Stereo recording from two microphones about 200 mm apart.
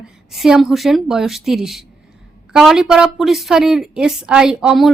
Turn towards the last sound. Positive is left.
turn(degrees=0)  # may be behind; listen again after turning